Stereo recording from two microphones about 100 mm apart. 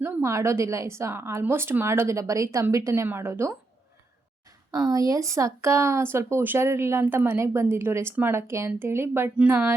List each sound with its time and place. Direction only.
0.0 s speech: 30° right (ahead or behind)
4.7 s speech: 40° right (ahead or behind)